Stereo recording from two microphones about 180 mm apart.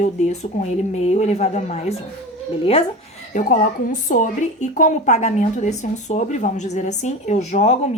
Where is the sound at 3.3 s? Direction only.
45° left (ahead or behind).